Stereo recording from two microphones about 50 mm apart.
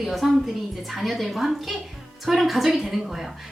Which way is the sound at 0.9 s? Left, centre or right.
Centre.